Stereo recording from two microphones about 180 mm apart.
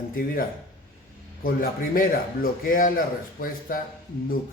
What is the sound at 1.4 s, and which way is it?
Speech, 55° left (ahead or behind).